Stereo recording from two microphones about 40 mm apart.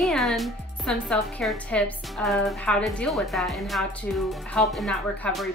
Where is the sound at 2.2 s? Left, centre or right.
Centre.